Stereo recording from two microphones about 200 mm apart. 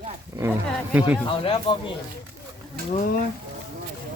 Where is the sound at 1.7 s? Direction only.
25° left (ahead or behind).